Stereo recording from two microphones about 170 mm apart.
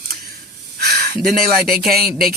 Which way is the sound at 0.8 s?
70° right (ahead or behind).